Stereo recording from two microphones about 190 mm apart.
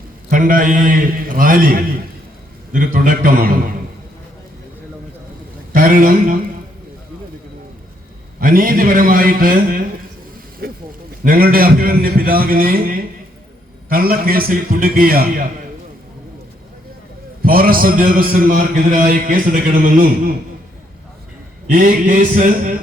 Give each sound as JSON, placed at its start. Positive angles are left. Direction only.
{"t": 0.3, "sound": "a man's voice", "side_deg": -45}
{"t": 5.7, "sound": "speech", "side_deg": -45}
{"t": 8.4, "sound": "a man's voice", "side_deg": -50}
{"t": 10.6, "sound": "a sound", "side_deg": -50}
{"t": 11.2, "sound": "a man's voice", "side_deg": -50}
{"t": 17.4, "sound": "a man's voice", "side_deg": -50}
{"t": 21.7, "sound": "a man's voice", "side_deg": -45}